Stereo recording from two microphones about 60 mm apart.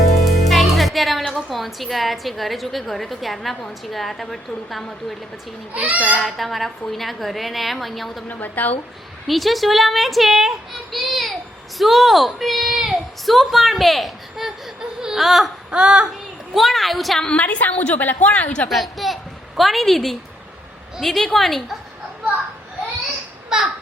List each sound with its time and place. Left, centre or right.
0.3 s music: centre
1.3 s a woman's voice: centre
5.7 s speech: right
6.2 s a woman's voice: centre
8.3 s a woman's voice: left
9.2 s a woman's voice: centre
15.7 s a sound: centre
16.6 s a woman's voice: centre
17.2 s a woman's voice: left
18.7 s a woman's voice: centre
23.5 s a sound: centre